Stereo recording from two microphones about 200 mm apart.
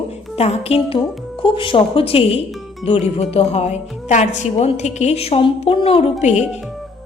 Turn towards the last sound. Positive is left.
turn(degrees=35)  # may be behind; listen again after turning